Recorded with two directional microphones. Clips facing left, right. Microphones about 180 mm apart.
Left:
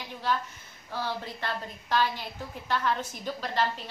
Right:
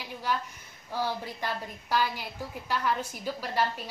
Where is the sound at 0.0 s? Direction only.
10° right (ahead or behind).